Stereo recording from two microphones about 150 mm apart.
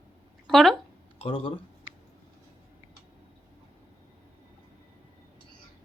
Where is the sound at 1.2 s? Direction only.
35° left (ahead or behind).